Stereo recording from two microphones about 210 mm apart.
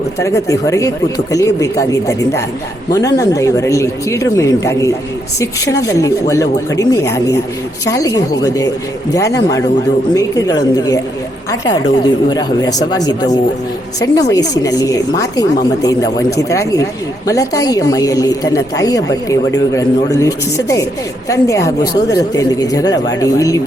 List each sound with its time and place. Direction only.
0.2 s a woman's voice: 15° left (ahead or behind)
12.3 s a woman's voice: 20° left (ahead or behind)